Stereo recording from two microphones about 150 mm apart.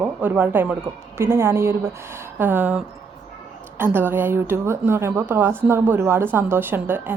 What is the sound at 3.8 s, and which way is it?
A woman's voice, 15° right (ahead or behind).